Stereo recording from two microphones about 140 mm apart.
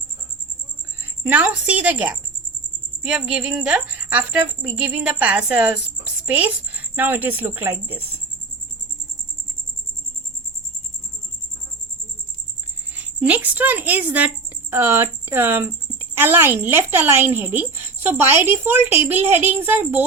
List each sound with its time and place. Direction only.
1.0 s a woman's voice: 15° right (ahead or behind)
13.0 s speech: 10° right (ahead or behind)